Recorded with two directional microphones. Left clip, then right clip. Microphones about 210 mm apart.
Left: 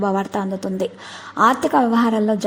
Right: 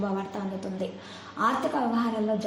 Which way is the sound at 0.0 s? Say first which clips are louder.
Left 11 dB; 45° left (ahead or behind).